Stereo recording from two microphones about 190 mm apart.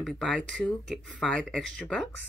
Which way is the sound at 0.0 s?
Centre (ahead or behind).